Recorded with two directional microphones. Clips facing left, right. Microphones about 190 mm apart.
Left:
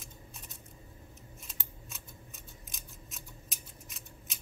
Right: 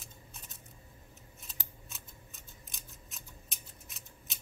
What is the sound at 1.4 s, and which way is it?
Scissors, centre (ahead or behind).